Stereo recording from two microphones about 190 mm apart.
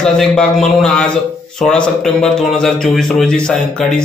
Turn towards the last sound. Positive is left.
turn(degrees=5)  # may be behind; listen again after turning